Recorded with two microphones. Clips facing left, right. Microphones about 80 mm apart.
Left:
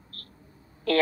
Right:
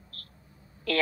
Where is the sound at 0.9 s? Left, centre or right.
Left.